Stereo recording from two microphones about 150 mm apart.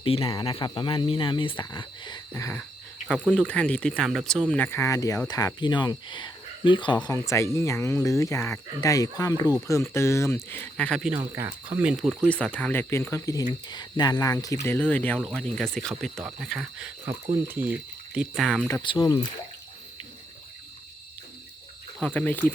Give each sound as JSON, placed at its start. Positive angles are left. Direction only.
{"t": 0.0, "sound": "speech", "side_deg": 40}
{"t": 2.3, "sound": "speech", "side_deg": 15}
{"t": 11.2, "sound": "speech", "side_deg": -20}
{"t": 11.8, "sound": "speech", "side_deg": -5}
{"t": 12.3, "sound": "speech", "side_deg": 5}
{"t": 18.8, "sound": "speech", "side_deg": 30}
{"t": 22.0, "sound": "speech", "side_deg": 10}